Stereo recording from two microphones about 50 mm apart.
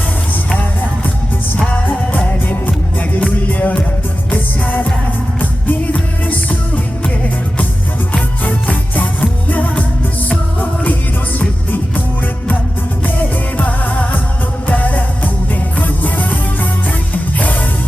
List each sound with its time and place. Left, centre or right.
0.6 s music: left
5.4 s music: left
8.1 s music: left
13.6 s music: left